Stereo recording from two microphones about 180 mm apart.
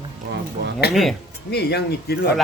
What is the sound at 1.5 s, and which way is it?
Speech, 65° left (ahead or behind).